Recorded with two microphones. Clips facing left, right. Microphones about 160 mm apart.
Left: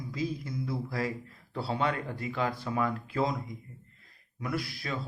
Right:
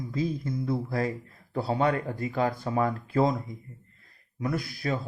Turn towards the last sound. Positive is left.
turn(degrees=-45)  # may be behind; listen again after turning